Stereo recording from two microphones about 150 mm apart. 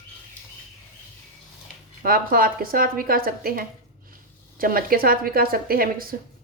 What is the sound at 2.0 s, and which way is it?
A woman's voice, 75° right (ahead or behind).